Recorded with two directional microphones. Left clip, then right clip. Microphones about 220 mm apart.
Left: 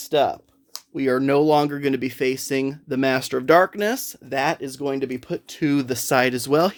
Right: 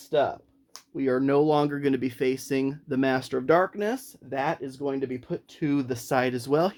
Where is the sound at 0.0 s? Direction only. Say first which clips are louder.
Left 5 dB; 50° left (ahead or behind).